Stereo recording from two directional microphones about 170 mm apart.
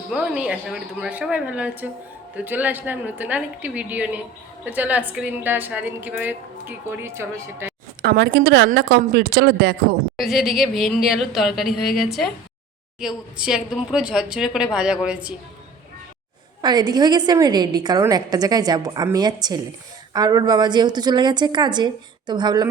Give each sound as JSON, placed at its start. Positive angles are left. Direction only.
{"t": 0.1, "sound": "a woman's voice", "side_deg": -5}
{"t": 8.0, "sound": "a woman's voice", "side_deg": -85}
{"t": 10.2, "sound": "a woman's voice", "side_deg": 0}
{"t": 16.6, "sound": "a woman's voice", "side_deg": -25}